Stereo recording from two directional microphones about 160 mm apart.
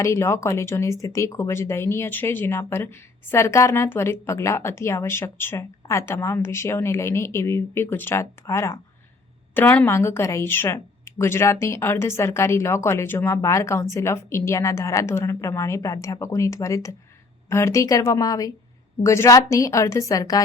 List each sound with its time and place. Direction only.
0.0 s a woman's voice: 15° left (ahead or behind)